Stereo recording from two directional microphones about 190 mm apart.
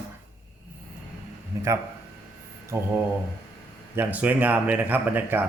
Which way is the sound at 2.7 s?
15° right (ahead or behind).